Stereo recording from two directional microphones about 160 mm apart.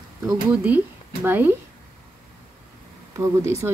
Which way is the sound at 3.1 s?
20° right (ahead or behind).